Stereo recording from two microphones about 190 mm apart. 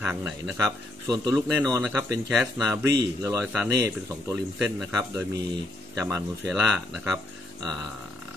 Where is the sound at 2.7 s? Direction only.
15° right (ahead or behind).